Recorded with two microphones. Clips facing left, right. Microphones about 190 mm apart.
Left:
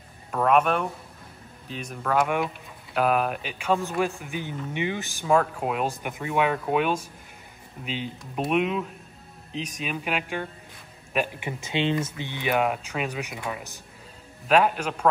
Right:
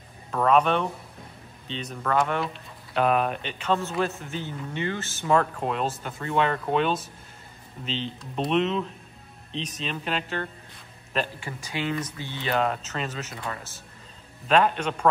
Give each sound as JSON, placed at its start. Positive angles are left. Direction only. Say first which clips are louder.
{"t": 0.3, "sound": "speech", "louder": "even", "side_deg": 5}